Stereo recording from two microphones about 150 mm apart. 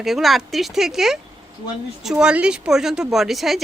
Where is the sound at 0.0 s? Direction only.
Centre (ahead or behind).